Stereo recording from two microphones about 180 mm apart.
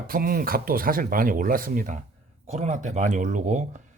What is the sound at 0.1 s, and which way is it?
A man's voice, 55° right (ahead or behind).